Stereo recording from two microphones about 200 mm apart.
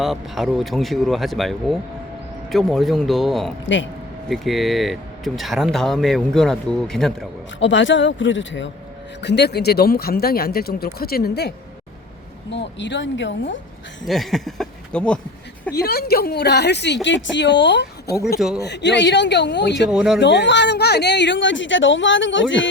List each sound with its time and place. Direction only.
0.0 s speech: centre (ahead or behind)
7.6 s speech: 70° left (ahead or behind)
9.2 s speech: 55° left (ahead or behind)
14.0 s speech: centre (ahead or behind)
15.7 s speech: 50° left (ahead or behind)
19.9 s speech: 5° right (ahead or behind)
20.1 s speech: 60° left (ahead or behind)